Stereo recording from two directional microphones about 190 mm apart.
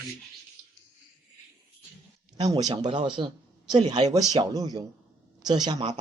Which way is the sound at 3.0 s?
25° right (ahead or behind).